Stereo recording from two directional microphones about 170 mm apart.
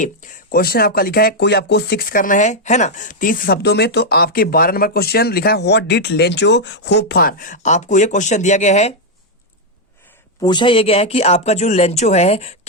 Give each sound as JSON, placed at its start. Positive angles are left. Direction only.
{"t": 0.0, "sound": "speech", "side_deg": 50}
{"t": 10.4, "sound": "speech", "side_deg": 25}